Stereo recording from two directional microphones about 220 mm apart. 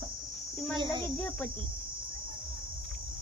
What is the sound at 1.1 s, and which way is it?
Speech, 5° left (ahead or behind).